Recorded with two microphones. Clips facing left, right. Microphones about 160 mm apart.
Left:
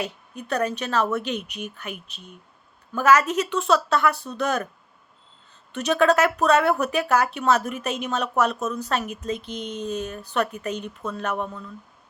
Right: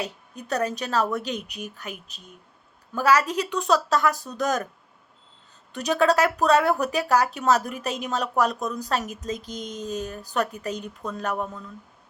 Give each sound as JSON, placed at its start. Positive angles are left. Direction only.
{"t": 0.0, "sound": "a woman's voice", "side_deg": -35}
{"t": 5.7, "sound": "a woman's voice", "side_deg": -35}
{"t": 8.5, "sound": "a woman's voice", "side_deg": -15}
{"t": 8.8, "sound": "a woman's voice", "side_deg": -35}